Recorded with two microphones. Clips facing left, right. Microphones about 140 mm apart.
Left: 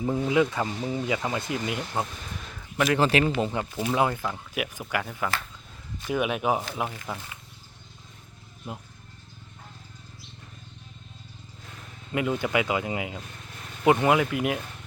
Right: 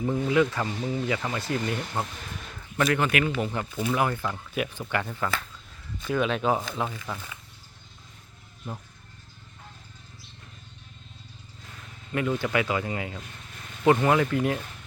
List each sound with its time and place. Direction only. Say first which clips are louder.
0.0 s speech: even; 20° left (ahead or behind)
3.0 s speech: left 3 dB; 30° left (ahead or behind)
4.1 s speech: right 1 dB; 10° left (ahead or behind)
8.7 s speech: even; 15° left (ahead or behind)
12.1 s speech: even; 20° left (ahead or behind)